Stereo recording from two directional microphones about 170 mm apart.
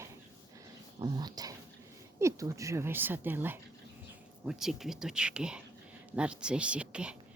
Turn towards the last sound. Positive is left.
turn(degrees=-5)  # may be behind; listen again after turning